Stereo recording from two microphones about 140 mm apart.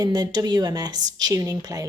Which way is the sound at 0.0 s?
30° right (ahead or behind).